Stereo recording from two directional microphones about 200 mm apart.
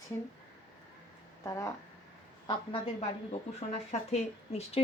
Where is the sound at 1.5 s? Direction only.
15° left (ahead or behind).